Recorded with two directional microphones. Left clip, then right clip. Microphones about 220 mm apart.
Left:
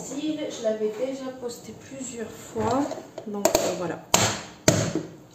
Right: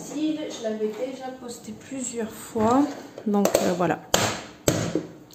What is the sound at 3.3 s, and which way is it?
Speech, 45° right (ahead or behind).